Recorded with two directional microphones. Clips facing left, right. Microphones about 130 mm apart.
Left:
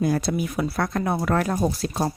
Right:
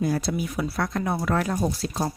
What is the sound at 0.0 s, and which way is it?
Speech, 55° left (ahead or behind).